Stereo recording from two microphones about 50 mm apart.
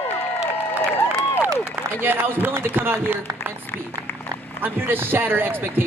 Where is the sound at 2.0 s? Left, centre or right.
Right.